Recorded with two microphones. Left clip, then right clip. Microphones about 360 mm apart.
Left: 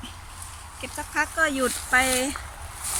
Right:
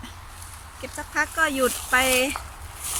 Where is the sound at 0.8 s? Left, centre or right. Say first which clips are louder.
Right 1 dB; centre.